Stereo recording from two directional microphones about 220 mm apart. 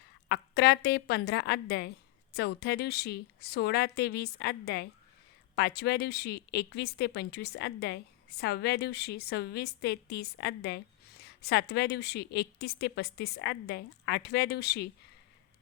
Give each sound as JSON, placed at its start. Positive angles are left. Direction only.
{"t": 0.3, "sound": "speech", "side_deg": 45}